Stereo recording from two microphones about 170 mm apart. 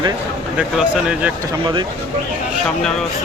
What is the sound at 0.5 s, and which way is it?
Speech, 5° right (ahead or behind).